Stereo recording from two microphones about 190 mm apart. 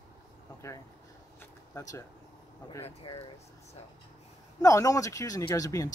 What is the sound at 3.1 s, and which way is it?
Speech, 30° left (ahead or behind).